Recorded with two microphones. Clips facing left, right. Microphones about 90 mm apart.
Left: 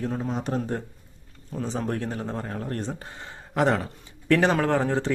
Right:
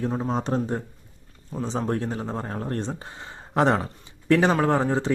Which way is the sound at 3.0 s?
20° right (ahead or behind).